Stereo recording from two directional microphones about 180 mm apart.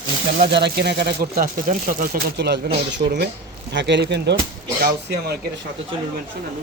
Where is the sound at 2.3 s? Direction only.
70° right (ahead or behind).